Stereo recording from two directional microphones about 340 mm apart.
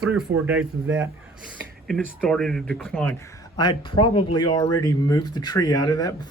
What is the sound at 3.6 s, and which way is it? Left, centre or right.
Speech, centre.